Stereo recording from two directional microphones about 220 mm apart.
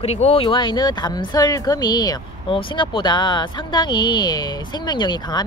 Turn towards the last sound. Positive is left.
turn(degrees=20)  # may be behind; listen again after turning